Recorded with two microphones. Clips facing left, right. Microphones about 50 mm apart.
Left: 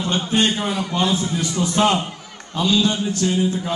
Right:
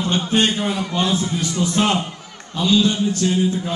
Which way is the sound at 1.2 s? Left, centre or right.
Left.